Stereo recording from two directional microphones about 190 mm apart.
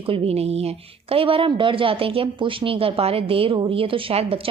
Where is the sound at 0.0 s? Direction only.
30° right (ahead or behind).